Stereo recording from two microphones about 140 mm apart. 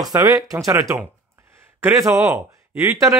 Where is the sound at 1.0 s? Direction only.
15° right (ahead or behind).